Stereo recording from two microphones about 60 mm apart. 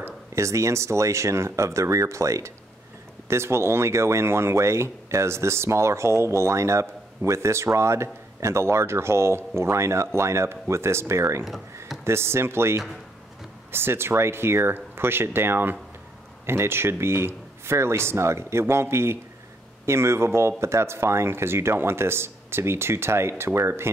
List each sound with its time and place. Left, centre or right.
0.0 s speech: right
3.3 s speech: right
11.4 s speech: centre
12.0 s speech: right